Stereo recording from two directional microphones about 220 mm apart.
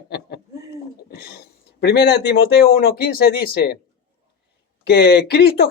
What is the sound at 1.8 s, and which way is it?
Speech, 45° left (ahead or behind).